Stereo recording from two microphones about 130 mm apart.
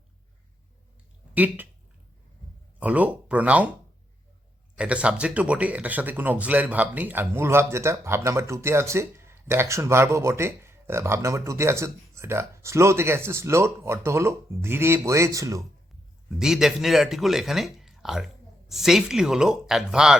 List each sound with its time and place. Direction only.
2.8 s speech: 10° right (ahead or behind)
4.8 s speech: 10° right (ahead or behind); by 15.6 s 25° right (ahead or behind)
16.4 s speech: 5° right (ahead or behind)